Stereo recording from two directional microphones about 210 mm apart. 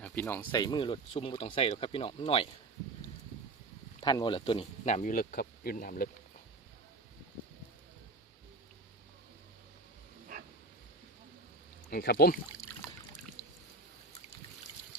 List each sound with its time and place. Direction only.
0.0 s speech: 10° left (ahead or behind); by 2.5 s 25° left (ahead or behind)
4.0 s speech: 20° left (ahead or behind); by 6.1 s 40° left (ahead or behind)
11.9 s speech: 45° left (ahead or behind)